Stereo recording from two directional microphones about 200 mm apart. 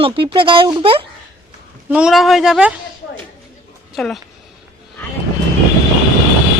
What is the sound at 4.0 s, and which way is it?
Speech, centre (ahead or behind).